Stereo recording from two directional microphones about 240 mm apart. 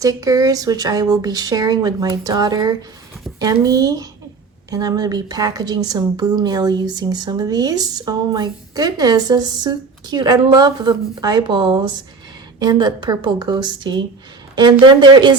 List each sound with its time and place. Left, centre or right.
0.0 s a woman's voice: centre